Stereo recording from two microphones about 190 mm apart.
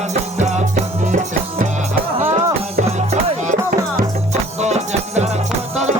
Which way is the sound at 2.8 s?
35° right (ahead or behind).